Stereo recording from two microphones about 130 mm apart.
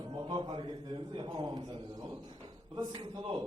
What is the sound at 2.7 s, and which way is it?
Speech, 35° right (ahead or behind).